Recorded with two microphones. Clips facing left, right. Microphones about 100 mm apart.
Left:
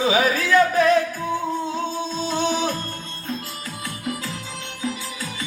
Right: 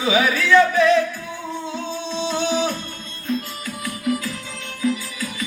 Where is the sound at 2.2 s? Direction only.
45° left (ahead or behind).